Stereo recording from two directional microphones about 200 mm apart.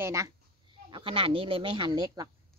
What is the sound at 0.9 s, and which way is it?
Speech, 25° right (ahead or behind).